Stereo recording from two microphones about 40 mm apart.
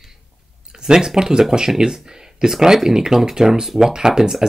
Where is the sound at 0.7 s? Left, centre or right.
Centre.